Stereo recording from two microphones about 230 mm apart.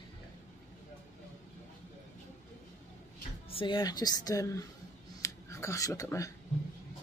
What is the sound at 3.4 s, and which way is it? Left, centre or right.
Speech, left.